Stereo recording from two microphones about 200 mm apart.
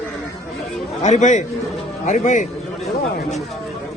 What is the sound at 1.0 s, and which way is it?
A man's voice, 35° left (ahead or behind).